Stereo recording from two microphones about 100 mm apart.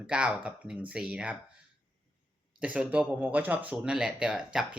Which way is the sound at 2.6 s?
10° right (ahead or behind).